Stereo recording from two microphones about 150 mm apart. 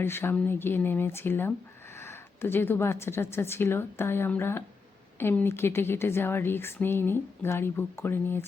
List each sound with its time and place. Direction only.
0.0 s speech: 15° left (ahead or behind)